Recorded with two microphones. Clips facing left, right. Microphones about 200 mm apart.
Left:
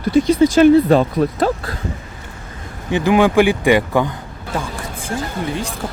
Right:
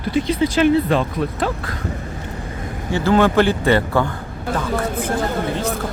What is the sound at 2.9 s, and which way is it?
Speech, 15° left (ahead or behind).